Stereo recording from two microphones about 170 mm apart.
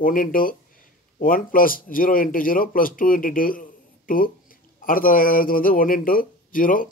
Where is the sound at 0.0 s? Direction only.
55° left (ahead or behind).